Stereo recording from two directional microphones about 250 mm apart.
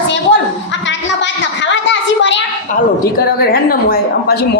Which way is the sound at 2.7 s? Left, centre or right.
Left.